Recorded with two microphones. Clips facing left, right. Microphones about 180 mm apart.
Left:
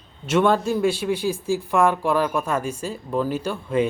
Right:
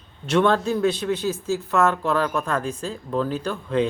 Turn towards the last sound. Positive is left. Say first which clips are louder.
# left 1 dB
turn(degrees=10)  # may be behind; listen again after turning